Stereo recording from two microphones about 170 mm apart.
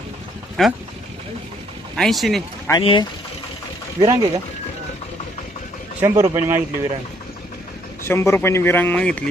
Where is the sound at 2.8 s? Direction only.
30° left (ahead or behind).